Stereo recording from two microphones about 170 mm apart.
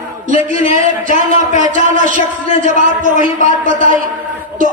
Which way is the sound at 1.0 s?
55° right (ahead or behind).